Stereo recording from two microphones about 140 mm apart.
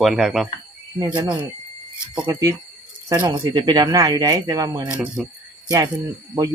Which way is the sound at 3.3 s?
30° right (ahead or behind).